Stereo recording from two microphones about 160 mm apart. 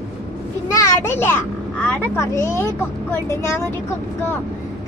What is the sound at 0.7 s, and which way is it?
A child's voice, 20° left (ahead or behind).